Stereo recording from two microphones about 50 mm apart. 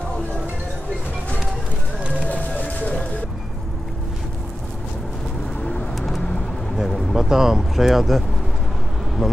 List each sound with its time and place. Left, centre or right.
2.2 s a sound: left
5.6 s bird: left
5.9 s bird: centre
6.9 s a sound: centre
7.2 s speech: centre
9.2 s speech: centre